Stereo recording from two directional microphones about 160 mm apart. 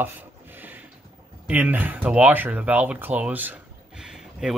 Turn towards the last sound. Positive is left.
turn(degrees=-5)  # may be behind; listen again after turning